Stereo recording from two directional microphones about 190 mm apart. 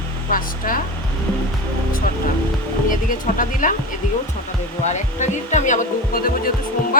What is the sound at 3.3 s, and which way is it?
Speech, 45° left (ahead or behind).